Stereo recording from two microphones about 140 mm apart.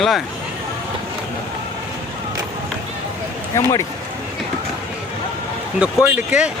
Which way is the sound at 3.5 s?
20° left (ahead or behind).